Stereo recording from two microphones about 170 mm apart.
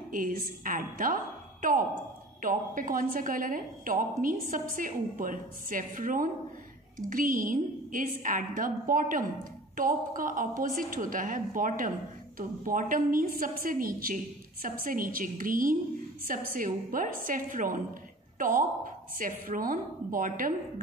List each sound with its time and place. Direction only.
0.1 s a woman's voice: 55° right (ahead or behind)